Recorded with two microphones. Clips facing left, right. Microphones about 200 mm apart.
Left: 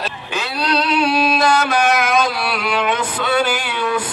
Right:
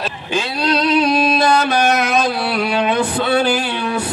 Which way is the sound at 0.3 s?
30° right (ahead or behind).